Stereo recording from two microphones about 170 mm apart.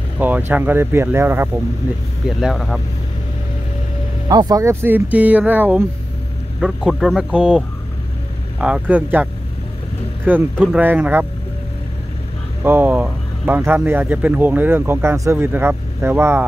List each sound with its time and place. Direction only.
0.2 s speech: 10° right (ahead or behind)
2.2 s speech: centre (ahead or behind)
4.3 s speech: 25° right (ahead or behind)
12.6 s speech: 10° right (ahead or behind)